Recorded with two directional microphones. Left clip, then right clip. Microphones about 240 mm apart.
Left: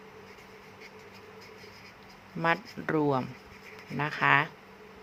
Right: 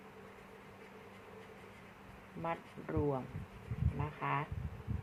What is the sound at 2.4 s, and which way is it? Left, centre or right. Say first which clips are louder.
Speech: left 13 dB; left.